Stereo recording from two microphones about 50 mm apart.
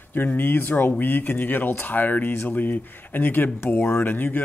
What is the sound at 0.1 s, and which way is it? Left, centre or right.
A man's voice, left.